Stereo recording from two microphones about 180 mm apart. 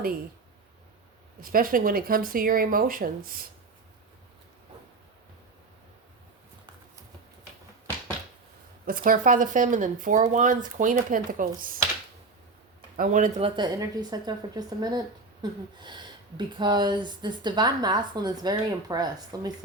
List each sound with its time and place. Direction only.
1.4 s speech: 50° right (ahead or behind)
8.9 s speech: 50° right (ahead or behind)
13.0 s speech: 45° right (ahead or behind)
13.6 s speech: 20° right (ahead or behind)